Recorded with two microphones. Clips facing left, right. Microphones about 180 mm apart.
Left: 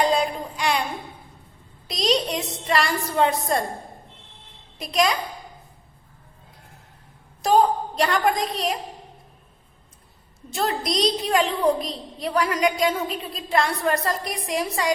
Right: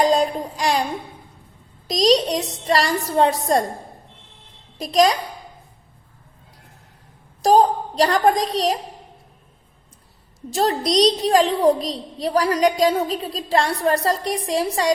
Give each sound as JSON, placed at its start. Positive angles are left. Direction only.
{"t": 0.0, "sound": "child singing", "side_deg": -40}
{"t": 1.9, "sound": "a woman's voice", "side_deg": -40}
{"t": 4.8, "sound": "a woman's voice", "side_deg": -35}
{"t": 7.4, "sound": "a woman's voice", "side_deg": -40}
{"t": 10.5, "sound": "a woman's voice", "side_deg": -35}